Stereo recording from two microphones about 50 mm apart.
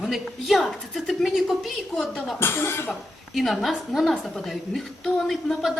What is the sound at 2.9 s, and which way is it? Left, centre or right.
A woman's voice, centre.